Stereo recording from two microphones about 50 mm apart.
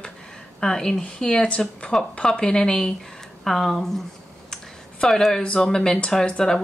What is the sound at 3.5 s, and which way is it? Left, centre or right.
Speech, centre.